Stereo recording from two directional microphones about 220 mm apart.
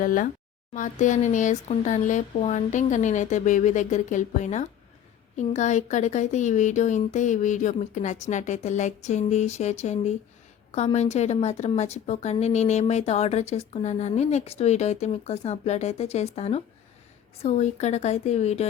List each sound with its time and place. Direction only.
0.0 s a woman's voice: 40° left (ahead or behind)